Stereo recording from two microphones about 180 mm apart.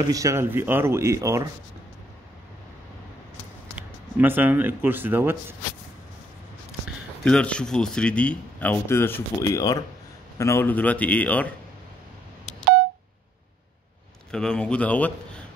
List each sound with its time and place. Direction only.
0.1 s speech: 15° right (ahead or behind)
3.7 s speech: 10° right (ahead or behind)
7.2 s speech: 5° left (ahead or behind)
14.3 s a man's voice: 5° left (ahead or behind)